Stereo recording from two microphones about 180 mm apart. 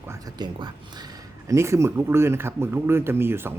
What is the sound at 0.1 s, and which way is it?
Speech, 25° right (ahead or behind).